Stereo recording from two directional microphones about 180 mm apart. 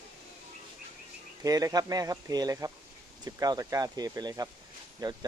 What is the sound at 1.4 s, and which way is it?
Speech, 20° right (ahead or behind).